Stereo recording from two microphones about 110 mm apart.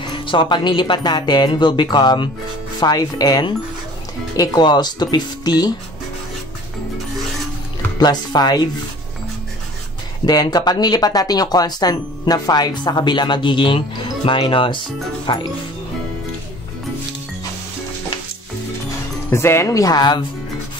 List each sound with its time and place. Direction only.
0.0 s speech: 45° left (ahead or behind)
8.0 s speech: 40° left (ahead or behind)
10.2 s speech: 40° left (ahead or behind)
19.3 s speech: 25° left (ahead or behind)